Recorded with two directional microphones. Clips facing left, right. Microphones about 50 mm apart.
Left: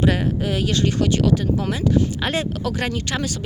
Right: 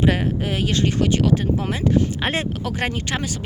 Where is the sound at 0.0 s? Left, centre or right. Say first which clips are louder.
Even; right.